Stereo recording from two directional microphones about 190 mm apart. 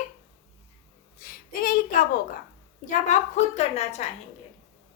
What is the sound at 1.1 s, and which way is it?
A woman's voice, 50° left (ahead or behind).